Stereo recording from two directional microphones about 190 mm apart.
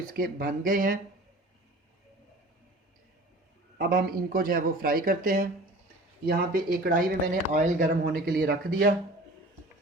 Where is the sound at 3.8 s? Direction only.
50° right (ahead or behind).